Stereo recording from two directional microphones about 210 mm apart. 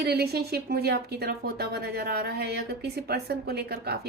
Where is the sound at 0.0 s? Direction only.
50° right (ahead or behind).